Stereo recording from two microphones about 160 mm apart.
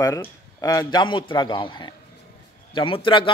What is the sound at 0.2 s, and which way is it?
A man's voice, 20° left (ahead or behind).